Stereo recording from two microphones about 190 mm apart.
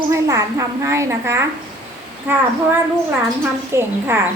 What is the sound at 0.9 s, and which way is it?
A woman's voice, 15° right (ahead or behind).